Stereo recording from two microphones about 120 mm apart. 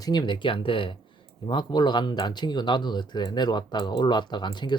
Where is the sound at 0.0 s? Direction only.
35° left (ahead or behind).